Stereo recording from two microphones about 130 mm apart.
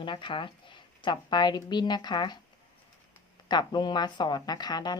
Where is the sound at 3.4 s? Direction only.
35° left (ahead or behind).